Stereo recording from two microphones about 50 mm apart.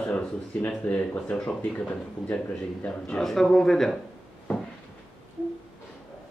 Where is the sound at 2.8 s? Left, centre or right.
Left.